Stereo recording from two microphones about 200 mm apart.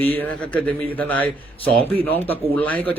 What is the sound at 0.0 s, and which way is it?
Speech, 10° left (ahead or behind).